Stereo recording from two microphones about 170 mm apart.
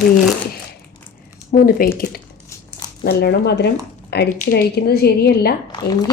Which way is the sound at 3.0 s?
75° left (ahead or behind).